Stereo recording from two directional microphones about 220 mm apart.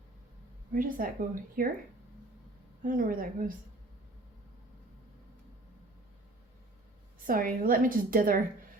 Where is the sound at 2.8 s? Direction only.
40° right (ahead or behind).